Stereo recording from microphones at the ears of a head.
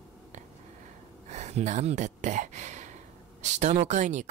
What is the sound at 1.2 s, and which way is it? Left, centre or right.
Speech, right.